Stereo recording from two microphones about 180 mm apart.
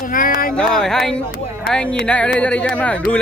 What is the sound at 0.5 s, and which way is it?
Speech, 5° left (ahead or behind).